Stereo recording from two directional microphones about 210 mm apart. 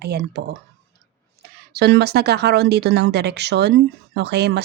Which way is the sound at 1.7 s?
50° right (ahead or behind).